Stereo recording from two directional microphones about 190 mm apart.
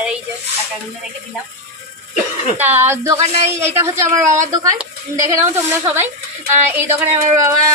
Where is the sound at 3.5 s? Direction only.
15° right (ahead or behind).